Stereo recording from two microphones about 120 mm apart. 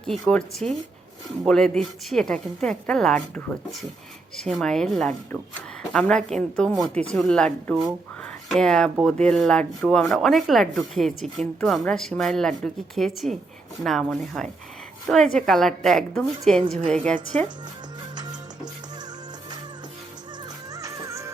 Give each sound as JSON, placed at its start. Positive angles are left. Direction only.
{"t": 0.0, "sound": "speech", "side_deg": 5}
{"t": 18.2, "sound": "music", "side_deg": -35}
{"t": 20.7, "sound": "music", "side_deg": -25}